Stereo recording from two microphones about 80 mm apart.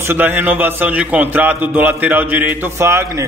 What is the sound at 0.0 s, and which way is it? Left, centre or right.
A man's voice, right.